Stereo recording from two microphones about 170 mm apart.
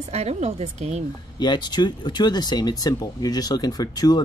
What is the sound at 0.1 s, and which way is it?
Speech, 40° right (ahead or behind).